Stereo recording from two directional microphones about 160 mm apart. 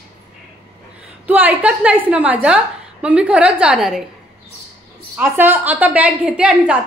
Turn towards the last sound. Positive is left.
turn(degrees=-10)  # may be behind; listen again after turning